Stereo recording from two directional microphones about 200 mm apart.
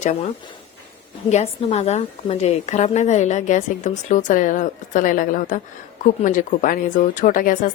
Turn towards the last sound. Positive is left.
turn(degrees=40)  # may be behind; listen again after turning